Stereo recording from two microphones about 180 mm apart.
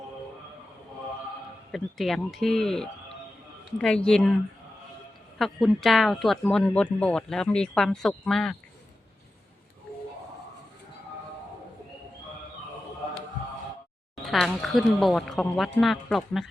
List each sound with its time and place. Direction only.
1.7 s speech: centre (ahead or behind)
5.4 s speech: centre (ahead or behind)
14.3 s speech: centre (ahead or behind)